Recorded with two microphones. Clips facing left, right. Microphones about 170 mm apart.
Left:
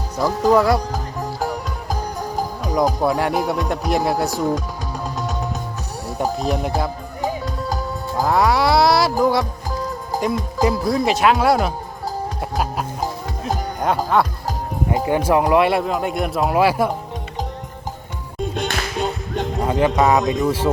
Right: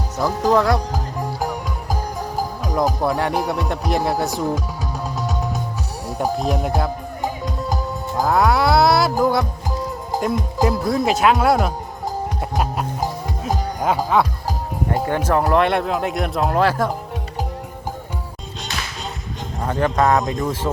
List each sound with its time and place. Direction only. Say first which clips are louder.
0.2 s speech: left 2 dB; centre (ahead or behind)
2.6 s speech: left 2 dB; centre (ahead or behind)
6.2 s speech: right 1 dB; centre (ahead or behind)
8.1 s speech: even; centre (ahead or behind)
10.6 s speech: left 1 dB; centre (ahead or behind)
12.4 s music: even; centre (ahead or behind)
14.8 s speech: left 2 dB; 5° left (ahead or behind)
18.5 s music: left 5 dB; 55° left (ahead or behind)
19.6 s speech: left 1 dB; 15° left (ahead or behind)